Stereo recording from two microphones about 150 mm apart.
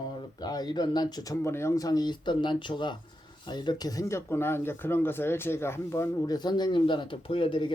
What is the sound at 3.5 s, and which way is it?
Speech, 30° left (ahead or behind).